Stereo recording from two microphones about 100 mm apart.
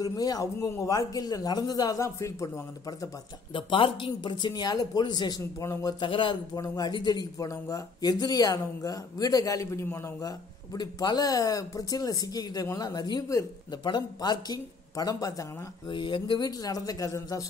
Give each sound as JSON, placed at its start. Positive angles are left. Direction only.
{"t": 0.0, "sound": "speech", "side_deg": 40}
{"t": 3.5, "sound": "speech", "side_deg": 60}
{"t": 5.7, "sound": "speech", "side_deg": 35}
{"t": 5.9, "sound": "speech", "side_deg": 55}
{"t": 6.6, "sound": "speech", "side_deg": 35}
{"t": 6.9, "sound": "speech", "side_deg": 45}
{"t": 10.2, "sound": "speech", "side_deg": 40}
{"t": 15.9, "sound": "speech", "side_deg": 55}
{"t": 16.4, "sound": "speech", "side_deg": 40}